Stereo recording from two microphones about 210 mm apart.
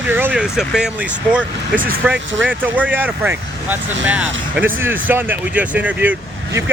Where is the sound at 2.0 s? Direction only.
5° right (ahead or behind).